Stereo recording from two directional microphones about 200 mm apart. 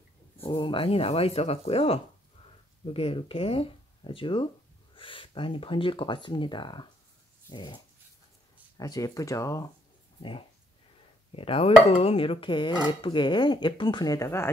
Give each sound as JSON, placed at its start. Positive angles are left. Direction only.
{"t": 0.4, "sound": "chopping", "side_deg": 25}
{"t": 7.4, "sound": "speech", "side_deg": 20}
{"t": 11.3, "sound": "chopping", "side_deg": 30}